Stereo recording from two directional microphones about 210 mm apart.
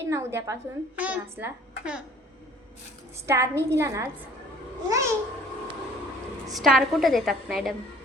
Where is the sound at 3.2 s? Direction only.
15° right (ahead or behind).